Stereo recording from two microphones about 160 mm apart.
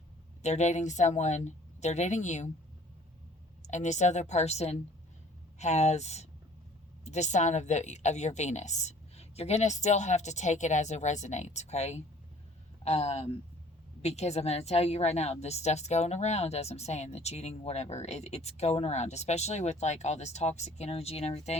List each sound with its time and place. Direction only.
0.4 s a woman's voice: 45° left (ahead or behind)
3.6 s a woman's voice: 50° left (ahead or behind)